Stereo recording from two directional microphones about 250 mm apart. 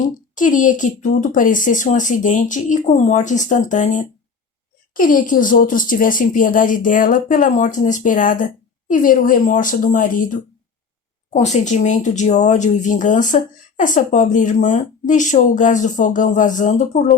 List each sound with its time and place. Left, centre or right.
0.3 s a woman's voice: left
11.3 s speech: left